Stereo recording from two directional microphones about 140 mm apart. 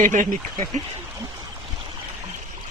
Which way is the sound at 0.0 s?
65° right (ahead or behind).